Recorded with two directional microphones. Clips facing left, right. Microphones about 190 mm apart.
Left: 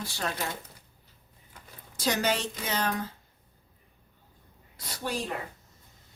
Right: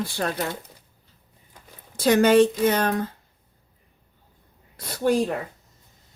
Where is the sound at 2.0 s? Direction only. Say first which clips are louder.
Right 12 dB; 55° right (ahead or behind).